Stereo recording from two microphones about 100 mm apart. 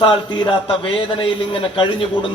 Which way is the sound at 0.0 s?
60° left (ahead or behind).